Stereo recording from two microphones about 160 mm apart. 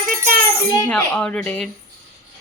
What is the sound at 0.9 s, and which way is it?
Speech, 5° left (ahead or behind).